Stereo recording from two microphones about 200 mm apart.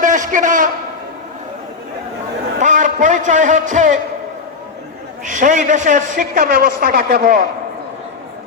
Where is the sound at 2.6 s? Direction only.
40° right (ahead or behind).